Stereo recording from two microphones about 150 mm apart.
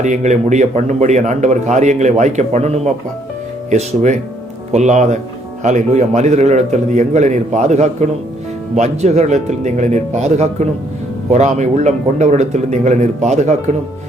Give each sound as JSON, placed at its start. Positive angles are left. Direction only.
{"t": 0.0, "sound": "a man's voice", "side_deg": -55}